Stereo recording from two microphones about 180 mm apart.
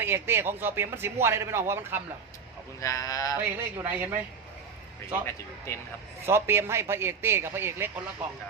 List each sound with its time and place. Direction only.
0.0 s a man's voice: 15° right (ahead or behind)
2.8 s speech: 20° left (ahead or behind)
3.4 s a man's voice: 10° right (ahead or behind)
5.7 s speech: 15° left (ahead or behind)
6.2 s a man's voice: 15° right (ahead or behind)